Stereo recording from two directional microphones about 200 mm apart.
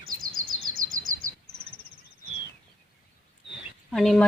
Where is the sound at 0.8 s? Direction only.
45° right (ahead or behind).